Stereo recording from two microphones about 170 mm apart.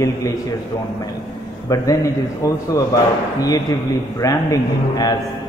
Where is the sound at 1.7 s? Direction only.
20° left (ahead or behind).